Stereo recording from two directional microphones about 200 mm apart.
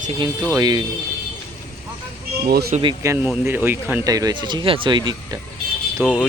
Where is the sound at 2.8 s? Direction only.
15° right (ahead or behind).